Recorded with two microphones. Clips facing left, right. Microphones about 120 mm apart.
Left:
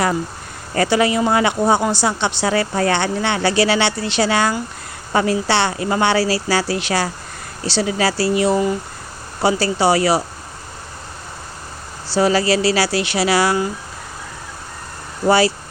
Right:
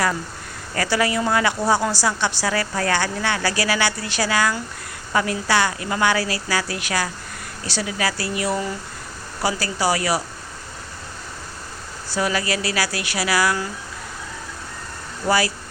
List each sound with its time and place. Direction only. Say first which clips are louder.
0.8 s a woman's voice: left 5 dB; 25° left (ahead or behind)
12.0 s a woman's voice: left 7 dB; 30° left (ahead or behind)
15.3 s a woman's voice: left 6 dB; 25° left (ahead or behind)